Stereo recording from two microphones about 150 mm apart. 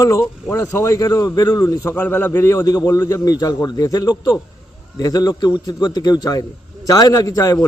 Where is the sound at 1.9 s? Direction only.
10° left (ahead or behind).